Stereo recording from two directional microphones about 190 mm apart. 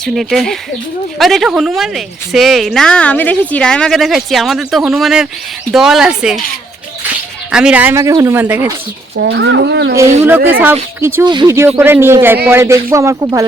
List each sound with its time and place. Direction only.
0.0 s a woman's voice: centre (ahead or behind)
7.5 s speech: 5° right (ahead or behind)
9.1 s speech: 65° right (ahead or behind)
10.2 s speech: 10° right (ahead or behind)